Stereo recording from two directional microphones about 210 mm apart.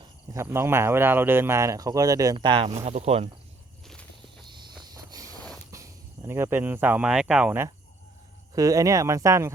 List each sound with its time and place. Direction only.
0.3 s speech: 10° right (ahead or behind); by 3.2 s 30° right (ahead or behind)
4.4 s walk: 20° right (ahead or behind)
4.8 s a sound: 15° right (ahead or behind)
5.7 s speech: 15° right (ahead or behind)